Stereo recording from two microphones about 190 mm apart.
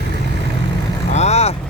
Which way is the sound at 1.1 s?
35° left (ahead or behind).